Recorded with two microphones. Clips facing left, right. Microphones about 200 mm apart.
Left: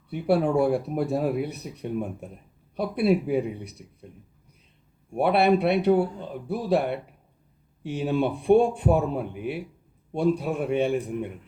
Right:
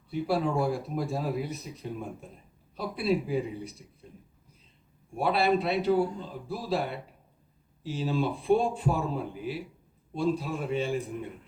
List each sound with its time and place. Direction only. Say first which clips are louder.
0.1 s speech: left 5 dB; 65° left (ahead or behind)
5.1 s speech: left 5 dB; 65° left (ahead or behind)